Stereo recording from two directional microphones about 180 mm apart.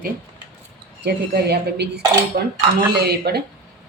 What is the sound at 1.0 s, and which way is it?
Speech, 65° right (ahead or behind).